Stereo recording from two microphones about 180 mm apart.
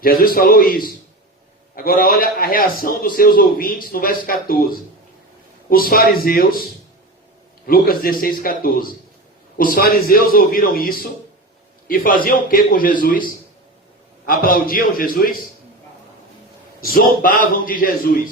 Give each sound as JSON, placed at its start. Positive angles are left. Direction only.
{"t": 0.0, "sound": "a man's voice", "side_deg": 50}
{"t": 7.7, "sound": "a man's voice", "side_deg": 55}
{"t": 16.8, "sound": "a man's voice", "side_deg": 50}